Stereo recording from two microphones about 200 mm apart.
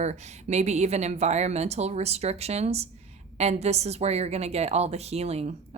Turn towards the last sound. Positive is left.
turn(degrees=-30)  # may be behind; listen again after turning